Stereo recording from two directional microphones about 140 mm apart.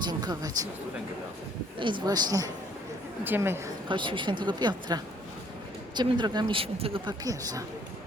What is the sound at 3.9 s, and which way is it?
Speech, 35° right (ahead or behind).